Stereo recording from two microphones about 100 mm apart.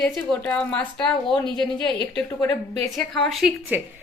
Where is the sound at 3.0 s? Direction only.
5° left (ahead or behind).